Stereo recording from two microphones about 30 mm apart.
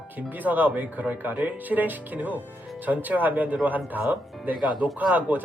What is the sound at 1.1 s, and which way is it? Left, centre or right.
Speech, right.